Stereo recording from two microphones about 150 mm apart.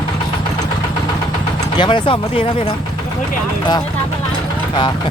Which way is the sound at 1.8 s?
35° left (ahead or behind).